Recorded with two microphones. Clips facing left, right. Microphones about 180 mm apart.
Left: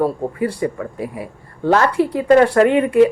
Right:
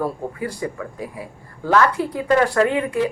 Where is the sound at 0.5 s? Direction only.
65° left (ahead or behind).